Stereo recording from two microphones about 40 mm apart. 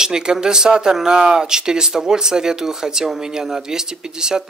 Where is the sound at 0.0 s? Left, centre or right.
Centre.